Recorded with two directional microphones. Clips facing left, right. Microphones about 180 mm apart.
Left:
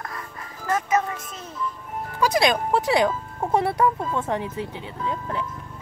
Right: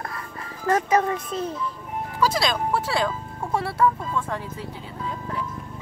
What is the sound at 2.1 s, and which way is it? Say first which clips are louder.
Speech: left 3 dB; 20° left (ahead or behind).